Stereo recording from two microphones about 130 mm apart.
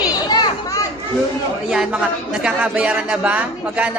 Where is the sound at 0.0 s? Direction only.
35° left (ahead or behind).